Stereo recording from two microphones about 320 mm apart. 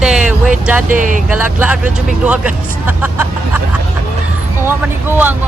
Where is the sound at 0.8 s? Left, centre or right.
Right.